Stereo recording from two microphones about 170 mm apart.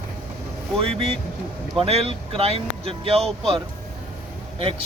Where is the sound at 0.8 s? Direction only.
35° right (ahead or behind).